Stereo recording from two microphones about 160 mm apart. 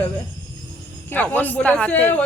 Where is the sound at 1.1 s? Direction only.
10° left (ahead or behind).